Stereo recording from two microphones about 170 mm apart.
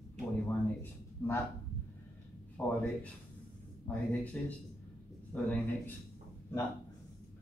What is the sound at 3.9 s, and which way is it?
Speech, 10° left (ahead or behind).